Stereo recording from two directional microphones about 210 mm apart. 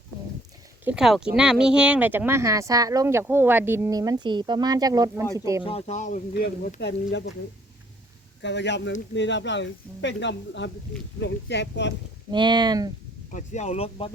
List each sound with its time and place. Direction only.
0.9 s speech: centre (ahead or behind)
5.6 s speech: 30° left (ahead or behind)
6.7 s speech: 55° left (ahead or behind)
8.4 s speech: 55° left (ahead or behind)
12.3 s speech: 20° right (ahead or behind)
13.3 s speech: 35° left (ahead or behind)